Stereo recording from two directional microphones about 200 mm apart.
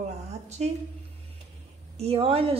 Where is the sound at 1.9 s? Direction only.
30° right (ahead or behind).